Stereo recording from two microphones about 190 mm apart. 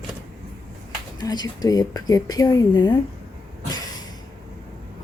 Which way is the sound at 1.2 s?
20° left (ahead or behind).